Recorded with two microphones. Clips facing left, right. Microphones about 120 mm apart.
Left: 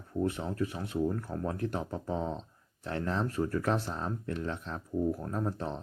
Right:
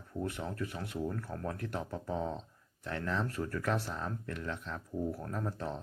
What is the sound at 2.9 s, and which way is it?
Speech, 30° left (ahead or behind).